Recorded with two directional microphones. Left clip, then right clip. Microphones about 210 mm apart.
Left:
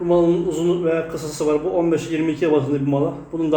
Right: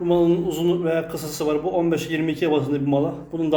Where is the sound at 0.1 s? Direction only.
15° right (ahead or behind).